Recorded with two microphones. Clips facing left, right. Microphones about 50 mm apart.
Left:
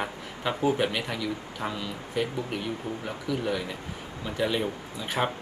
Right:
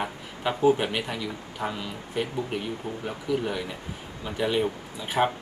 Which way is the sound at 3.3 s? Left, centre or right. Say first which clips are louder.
Right 1 dB; centre.